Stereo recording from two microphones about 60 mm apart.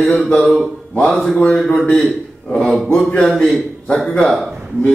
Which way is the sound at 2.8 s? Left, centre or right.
Centre.